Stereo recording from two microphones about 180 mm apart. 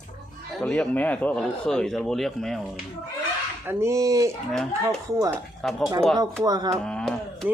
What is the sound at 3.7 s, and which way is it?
Speech, 15° right (ahead or behind).